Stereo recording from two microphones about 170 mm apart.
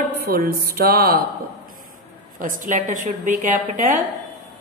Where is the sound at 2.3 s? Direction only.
50° right (ahead or behind).